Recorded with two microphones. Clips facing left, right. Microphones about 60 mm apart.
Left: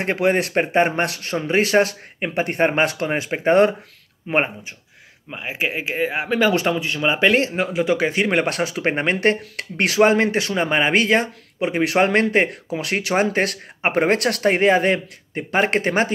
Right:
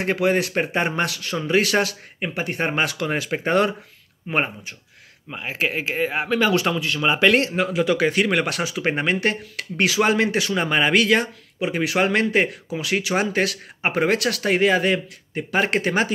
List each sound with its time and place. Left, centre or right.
0.0 s speech: left
5.3 s speech: centre
6.2 s speech: left